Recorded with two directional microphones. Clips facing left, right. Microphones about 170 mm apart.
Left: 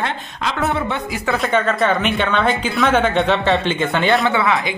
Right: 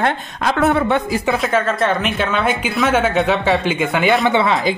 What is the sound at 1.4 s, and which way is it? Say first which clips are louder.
Speech: even; centre (ahead or behind).